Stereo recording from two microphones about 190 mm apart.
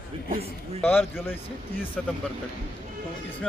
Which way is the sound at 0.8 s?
10° left (ahead or behind).